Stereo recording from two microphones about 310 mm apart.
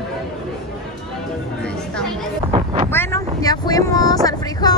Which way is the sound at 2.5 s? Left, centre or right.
Centre.